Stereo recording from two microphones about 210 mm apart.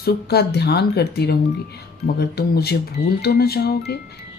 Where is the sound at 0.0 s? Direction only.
50° left (ahead or behind).